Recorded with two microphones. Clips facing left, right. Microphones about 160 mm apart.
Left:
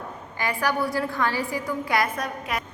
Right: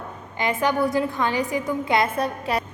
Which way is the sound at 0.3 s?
20° right (ahead or behind).